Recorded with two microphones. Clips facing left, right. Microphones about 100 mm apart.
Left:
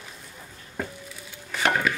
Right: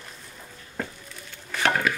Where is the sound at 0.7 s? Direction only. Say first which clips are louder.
Left 1 dB; 5° left (ahead or behind).